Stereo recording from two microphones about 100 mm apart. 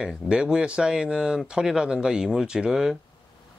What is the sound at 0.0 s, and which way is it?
Speech, 5° right (ahead or behind).